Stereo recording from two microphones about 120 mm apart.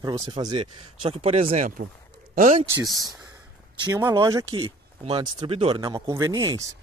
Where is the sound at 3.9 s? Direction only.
25° right (ahead or behind).